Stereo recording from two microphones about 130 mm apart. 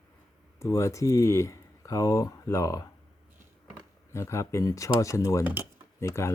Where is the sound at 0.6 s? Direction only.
20° left (ahead or behind).